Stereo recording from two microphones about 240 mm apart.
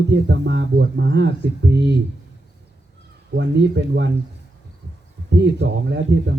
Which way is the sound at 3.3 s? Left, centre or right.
Right.